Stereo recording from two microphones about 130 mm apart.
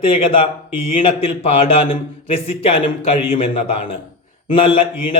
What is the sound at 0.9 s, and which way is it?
A man's voice, 50° left (ahead or behind).